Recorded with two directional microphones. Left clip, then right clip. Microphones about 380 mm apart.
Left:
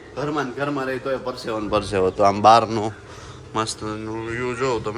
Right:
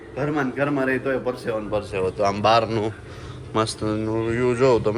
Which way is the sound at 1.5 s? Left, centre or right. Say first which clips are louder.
Left 3 dB; left.